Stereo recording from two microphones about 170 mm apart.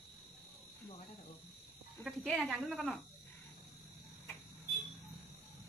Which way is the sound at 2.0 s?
Centre (ahead or behind).